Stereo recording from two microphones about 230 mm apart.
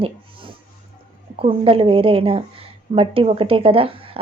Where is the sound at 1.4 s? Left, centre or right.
Right.